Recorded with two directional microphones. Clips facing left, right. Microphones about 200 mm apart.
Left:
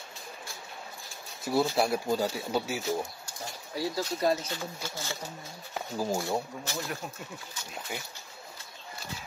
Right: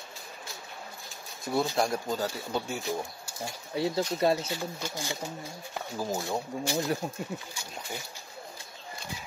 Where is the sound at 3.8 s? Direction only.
25° right (ahead or behind).